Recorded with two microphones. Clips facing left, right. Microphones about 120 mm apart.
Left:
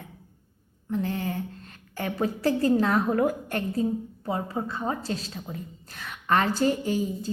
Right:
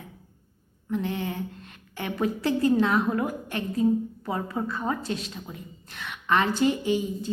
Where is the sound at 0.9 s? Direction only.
35° left (ahead or behind).